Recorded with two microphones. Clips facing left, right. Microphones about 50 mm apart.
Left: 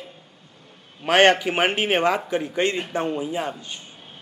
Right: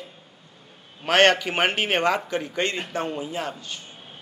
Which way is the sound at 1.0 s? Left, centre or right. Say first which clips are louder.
Left 2 dB; centre.